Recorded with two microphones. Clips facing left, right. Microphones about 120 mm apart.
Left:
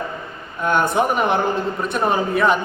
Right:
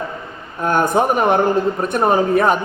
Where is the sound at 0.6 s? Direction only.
40° right (ahead or behind).